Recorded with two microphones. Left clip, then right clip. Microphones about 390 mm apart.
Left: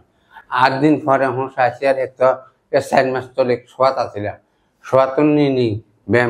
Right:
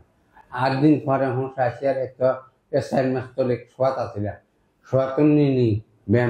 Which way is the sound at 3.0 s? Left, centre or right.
Left.